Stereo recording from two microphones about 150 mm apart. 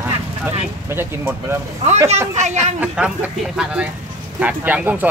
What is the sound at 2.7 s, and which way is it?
Speech, 10° right (ahead or behind).